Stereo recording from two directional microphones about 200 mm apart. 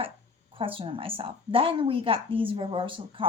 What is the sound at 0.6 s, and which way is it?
A woman's voice, 25° right (ahead or behind).